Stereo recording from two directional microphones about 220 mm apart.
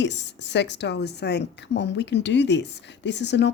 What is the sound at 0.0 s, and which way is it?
A woman's voice, 50° left (ahead or behind).